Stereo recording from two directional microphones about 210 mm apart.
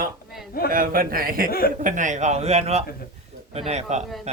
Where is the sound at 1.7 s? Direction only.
35° right (ahead or behind).